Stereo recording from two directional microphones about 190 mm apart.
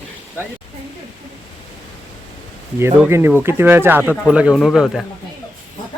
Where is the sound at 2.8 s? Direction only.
15° right (ahead or behind).